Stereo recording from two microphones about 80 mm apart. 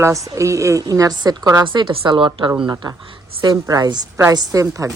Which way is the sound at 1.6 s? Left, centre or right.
Right.